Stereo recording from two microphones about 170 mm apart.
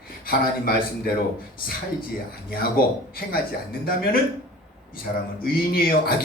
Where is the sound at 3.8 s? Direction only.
60° left (ahead or behind).